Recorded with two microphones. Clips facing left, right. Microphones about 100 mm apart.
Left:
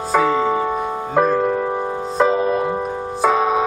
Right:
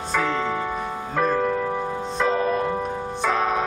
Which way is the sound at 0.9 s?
25° left (ahead or behind).